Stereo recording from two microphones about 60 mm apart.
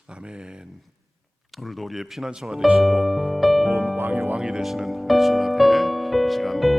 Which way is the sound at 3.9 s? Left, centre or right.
Right.